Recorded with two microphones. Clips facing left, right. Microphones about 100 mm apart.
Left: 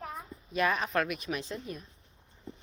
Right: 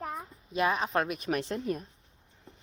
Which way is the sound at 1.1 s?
50° right (ahead or behind).